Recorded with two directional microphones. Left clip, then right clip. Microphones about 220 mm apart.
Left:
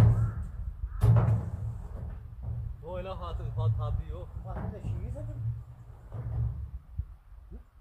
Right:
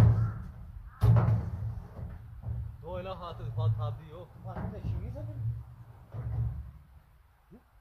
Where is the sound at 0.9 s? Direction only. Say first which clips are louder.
Even; 10° left (ahead or behind).